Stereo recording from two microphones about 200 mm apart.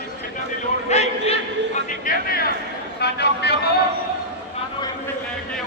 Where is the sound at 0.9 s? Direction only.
30° left (ahead or behind).